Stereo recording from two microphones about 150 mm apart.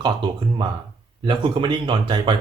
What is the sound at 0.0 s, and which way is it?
Speech, 30° right (ahead or behind).